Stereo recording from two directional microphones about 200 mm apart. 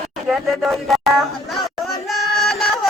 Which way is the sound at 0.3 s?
Centre (ahead or behind).